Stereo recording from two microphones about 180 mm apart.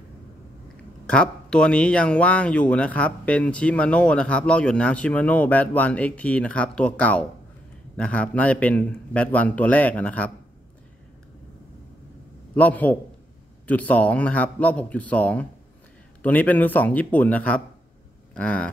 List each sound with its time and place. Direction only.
1.0 s speech: 5° left (ahead or behind)
12.5 s speech: 10° left (ahead or behind)